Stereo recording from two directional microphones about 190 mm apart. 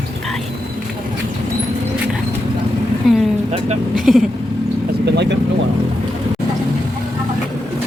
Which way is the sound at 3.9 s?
Centre (ahead or behind).